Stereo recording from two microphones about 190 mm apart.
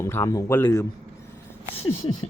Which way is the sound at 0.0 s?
15° left (ahead or behind).